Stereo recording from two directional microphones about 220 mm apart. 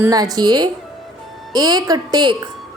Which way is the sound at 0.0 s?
15° right (ahead or behind).